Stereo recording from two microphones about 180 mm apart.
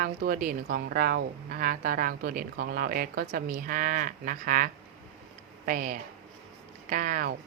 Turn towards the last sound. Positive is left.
turn(degrees=-50)  # may be behind; listen again after turning